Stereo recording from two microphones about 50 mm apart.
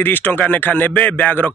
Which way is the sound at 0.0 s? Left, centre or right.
Left.